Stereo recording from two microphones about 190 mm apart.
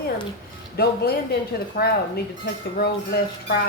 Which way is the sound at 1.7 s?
50° left (ahead or behind).